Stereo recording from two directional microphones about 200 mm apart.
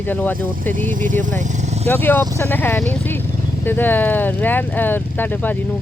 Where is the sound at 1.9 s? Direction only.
10° left (ahead or behind).